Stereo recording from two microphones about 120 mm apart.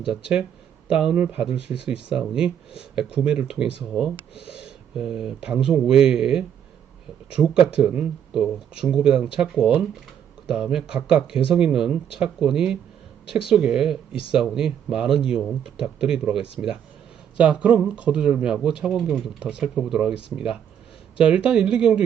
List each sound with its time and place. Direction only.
0.9 s speech: 5° right (ahead or behind)
10.5 s speech: 5° right (ahead or behind)